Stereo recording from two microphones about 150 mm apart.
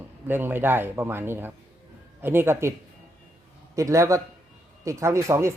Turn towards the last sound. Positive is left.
turn(degrees=-20)  # may be behind; listen again after turning